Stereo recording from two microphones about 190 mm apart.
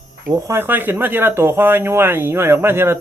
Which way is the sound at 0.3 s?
15° right (ahead or behind).